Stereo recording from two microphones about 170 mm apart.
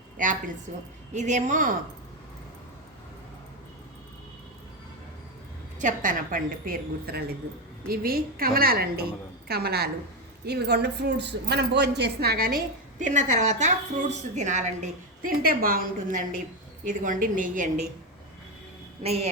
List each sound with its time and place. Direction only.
0.2 s a woman's voice: 50° right (ahead or behind)
5.8 s a woman's voice: 50° right (ahead or behind)
19.0 s a woman's voice: 40° right (ahead or behind)